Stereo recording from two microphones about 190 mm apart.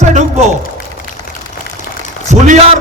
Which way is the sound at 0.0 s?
35° right (ahead or behind).